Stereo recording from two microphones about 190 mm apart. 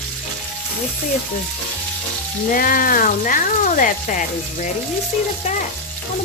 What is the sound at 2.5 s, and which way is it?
Speech, 45° left (ahead or behind).